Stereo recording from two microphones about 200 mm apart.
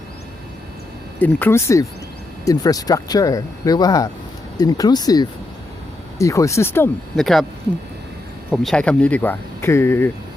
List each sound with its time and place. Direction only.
1.2 s speech: 10° left (ahead or behind)
8.4 s speech: centre (ahead or behind)